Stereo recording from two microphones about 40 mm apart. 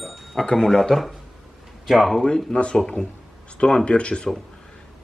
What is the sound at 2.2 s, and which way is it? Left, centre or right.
Speech, centre.